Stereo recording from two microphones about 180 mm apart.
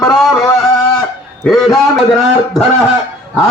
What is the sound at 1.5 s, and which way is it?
Music, centre (ahead or behind).